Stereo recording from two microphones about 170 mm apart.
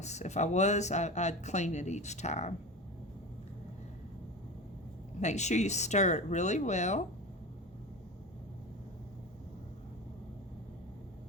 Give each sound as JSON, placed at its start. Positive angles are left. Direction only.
{"t": 0.0, "sound": "speech", "side_deg": 40}
{"t": 5.2, "sound": "speech", "side_deg": 45}